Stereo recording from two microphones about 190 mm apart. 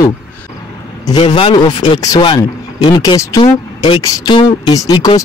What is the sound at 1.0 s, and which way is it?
Speech, 25° left (ahead or behind).